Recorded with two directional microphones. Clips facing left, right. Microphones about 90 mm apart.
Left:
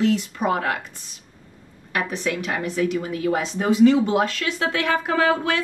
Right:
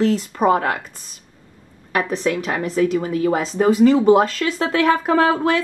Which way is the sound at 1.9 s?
35° right (ahead or behind).